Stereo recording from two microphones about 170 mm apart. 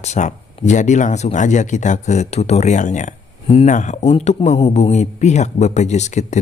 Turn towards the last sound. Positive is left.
turn(degrees=45)  # may be behind; listen again after turning